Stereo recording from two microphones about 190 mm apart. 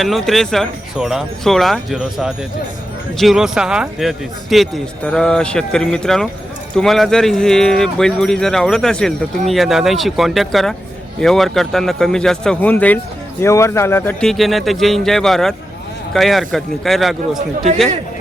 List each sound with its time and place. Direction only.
0.0 s speech: centre (ahead or behind)